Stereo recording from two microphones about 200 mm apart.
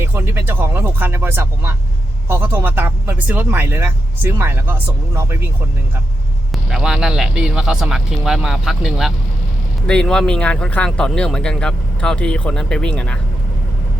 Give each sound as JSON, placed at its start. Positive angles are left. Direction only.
{"t": 0.0, "sound": "speech", "side_deg": -10}
{"t": 6.5, "sound": "speech", "side_deg": 0}